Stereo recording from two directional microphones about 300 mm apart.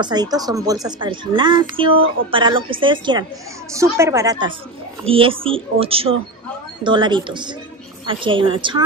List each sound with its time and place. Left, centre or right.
0.0 s a woman's voice: centre